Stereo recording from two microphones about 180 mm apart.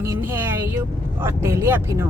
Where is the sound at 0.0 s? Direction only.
15° right (ahead or behind).